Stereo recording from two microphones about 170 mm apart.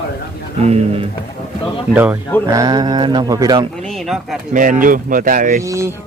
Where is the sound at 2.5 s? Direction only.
20° right (ahead or behind).